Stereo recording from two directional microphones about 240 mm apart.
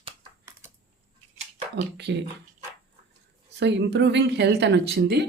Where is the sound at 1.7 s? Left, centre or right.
Right.